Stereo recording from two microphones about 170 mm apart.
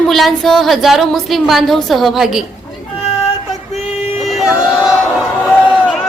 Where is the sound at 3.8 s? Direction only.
35° left (ahead or behind).